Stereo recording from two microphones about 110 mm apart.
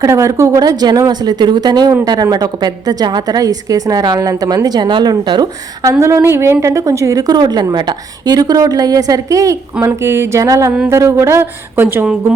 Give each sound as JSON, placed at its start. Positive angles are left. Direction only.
{"t": 0.0, "sound": "a woman's voice", "side_deg": -30}
{"t": 6.0, "sound": "a woman's voice", "side_deg": -25}